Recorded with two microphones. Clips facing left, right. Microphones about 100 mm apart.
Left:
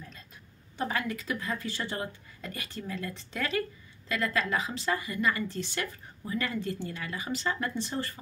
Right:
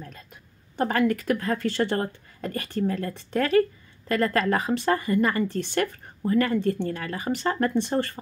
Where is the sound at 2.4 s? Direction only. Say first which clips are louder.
Right 12 dB; 50° right (ahead or behind).